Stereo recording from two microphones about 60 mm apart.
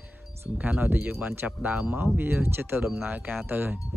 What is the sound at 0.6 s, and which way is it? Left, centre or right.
Speech, right.